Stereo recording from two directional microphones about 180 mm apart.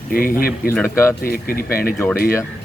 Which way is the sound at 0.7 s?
15° left (ahead or behind).